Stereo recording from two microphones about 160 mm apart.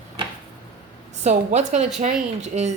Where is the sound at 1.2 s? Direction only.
45° right (ahead or behind).